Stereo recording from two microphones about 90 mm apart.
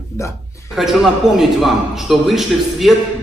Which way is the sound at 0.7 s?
Centre (ahead or behind).